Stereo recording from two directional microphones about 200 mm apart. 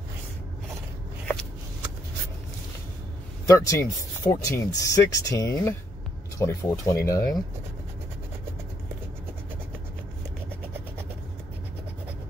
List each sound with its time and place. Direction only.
3.4 s speech: 15° left (ahead or behind)